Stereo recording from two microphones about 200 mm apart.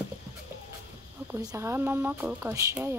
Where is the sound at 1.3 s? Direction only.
15° right (ahead or behind).